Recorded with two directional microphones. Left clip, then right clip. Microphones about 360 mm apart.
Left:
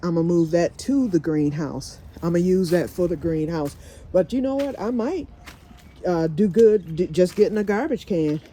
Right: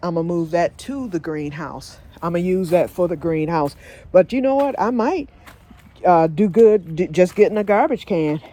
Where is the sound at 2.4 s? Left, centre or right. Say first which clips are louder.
Right 4 dB; centre.